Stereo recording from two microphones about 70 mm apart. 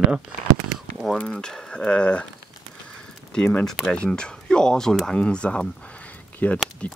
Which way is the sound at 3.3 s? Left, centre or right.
Centre.